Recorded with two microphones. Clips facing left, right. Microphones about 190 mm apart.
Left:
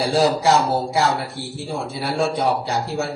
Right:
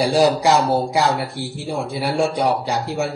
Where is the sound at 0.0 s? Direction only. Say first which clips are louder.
Right 2 dB; 15° right (ahead or behind).